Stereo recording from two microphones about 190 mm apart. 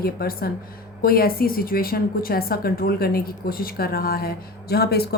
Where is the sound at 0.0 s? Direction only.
50° left (ahead or behind).